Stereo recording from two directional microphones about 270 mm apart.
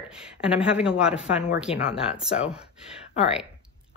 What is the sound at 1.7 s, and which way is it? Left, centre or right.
Speech, left.